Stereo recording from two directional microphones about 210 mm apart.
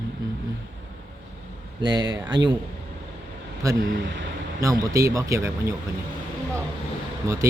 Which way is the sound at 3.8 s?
55° right (ahead or behind).